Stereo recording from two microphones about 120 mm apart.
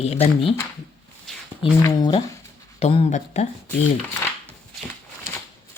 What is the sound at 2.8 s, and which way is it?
Speech, 55° left (ahead or behind).